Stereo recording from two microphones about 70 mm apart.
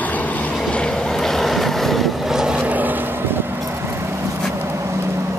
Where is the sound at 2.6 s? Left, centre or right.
Right.